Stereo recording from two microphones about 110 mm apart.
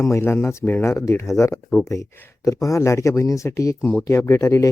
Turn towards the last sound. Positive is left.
turn(degrees=25)  # may be behind; listen again after turning